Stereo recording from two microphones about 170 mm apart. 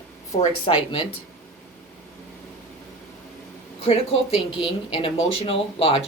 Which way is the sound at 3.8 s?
35° left (ahead or behind).